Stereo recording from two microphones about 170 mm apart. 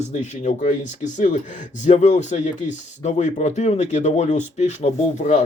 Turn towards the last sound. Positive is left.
turn(degrees=45)  # may be behind; listen again after turning